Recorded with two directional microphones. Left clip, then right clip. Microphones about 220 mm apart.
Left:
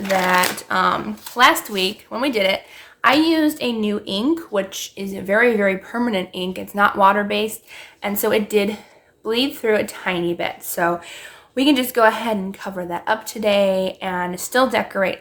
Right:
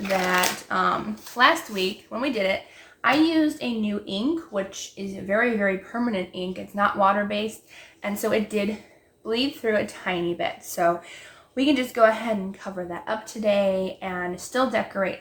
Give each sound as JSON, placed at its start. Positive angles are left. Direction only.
{"t": 0.3, "sound": "speech", "side_deg": 45}